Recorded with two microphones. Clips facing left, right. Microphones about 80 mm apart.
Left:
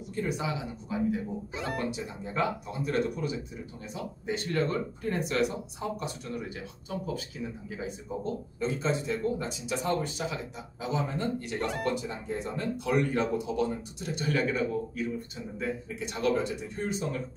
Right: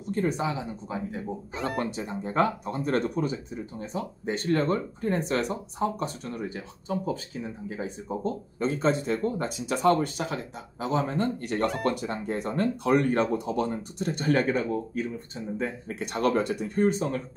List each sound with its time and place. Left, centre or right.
0.0 s speech: right
1.5 s speech: centre
1.8 s speech: right
15.9 s speech: right